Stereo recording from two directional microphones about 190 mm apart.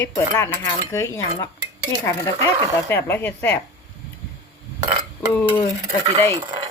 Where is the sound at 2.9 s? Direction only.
10° left (ahead or behind).